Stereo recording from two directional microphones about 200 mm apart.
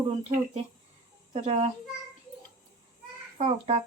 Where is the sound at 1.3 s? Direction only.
30° right (ahead or behind).